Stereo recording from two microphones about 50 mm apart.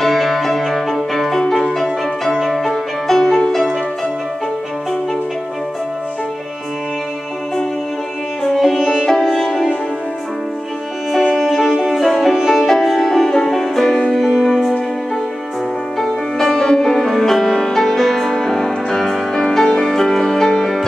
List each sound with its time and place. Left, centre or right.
0.0 s music: centre
1.4 s music: centre
1.8 s music: centre
8.5 s music: centre
11.3 s music: centre
16.0 s music: centre